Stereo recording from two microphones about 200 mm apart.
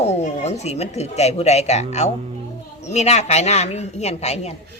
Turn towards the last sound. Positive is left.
turn(degrees=30)  # may be behind; listen again after turning